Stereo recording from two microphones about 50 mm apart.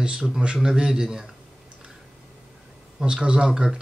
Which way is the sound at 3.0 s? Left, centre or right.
Centre.